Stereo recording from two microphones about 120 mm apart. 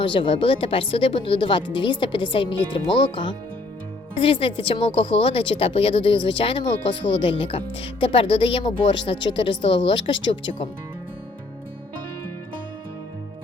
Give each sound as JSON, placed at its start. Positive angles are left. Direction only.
{"t": 0.0, "sound": "speech", "side_deg": 45}
{"t": 4.2, "sound": "speech", "side_deg": 50}